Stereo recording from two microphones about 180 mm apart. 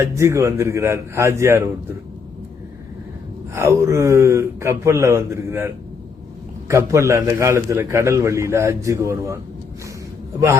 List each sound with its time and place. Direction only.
0.0 s a man's voice: 15° right (ahead or behind)
3.5 s a man's voice: 15° right (ahead or behind)